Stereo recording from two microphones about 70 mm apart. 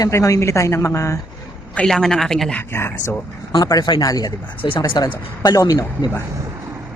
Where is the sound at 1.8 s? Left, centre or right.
Centre.